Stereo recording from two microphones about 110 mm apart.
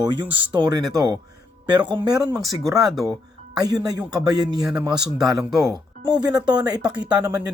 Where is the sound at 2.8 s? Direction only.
Centre (ahead or behind).